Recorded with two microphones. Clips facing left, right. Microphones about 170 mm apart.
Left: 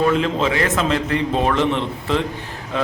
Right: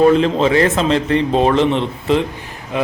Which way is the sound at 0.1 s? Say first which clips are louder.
Right 6 dB; 35° right (ahead or behind).